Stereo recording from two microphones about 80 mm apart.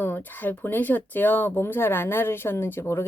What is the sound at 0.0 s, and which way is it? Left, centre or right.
Speech, left.